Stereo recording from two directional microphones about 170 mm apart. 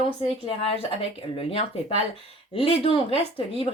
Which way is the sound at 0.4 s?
35° left (ahead or behind).